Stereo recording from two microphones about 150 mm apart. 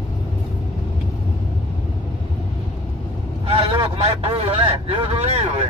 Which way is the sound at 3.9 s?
40° right (ahead or behind).